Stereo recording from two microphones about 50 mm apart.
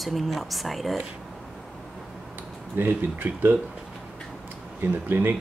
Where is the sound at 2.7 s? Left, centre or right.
Right.